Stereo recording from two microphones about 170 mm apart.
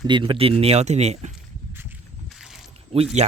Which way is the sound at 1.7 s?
15° right (ahead or behind).